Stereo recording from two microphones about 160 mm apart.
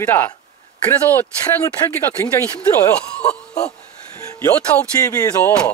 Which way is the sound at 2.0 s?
15° left (ahead or behind).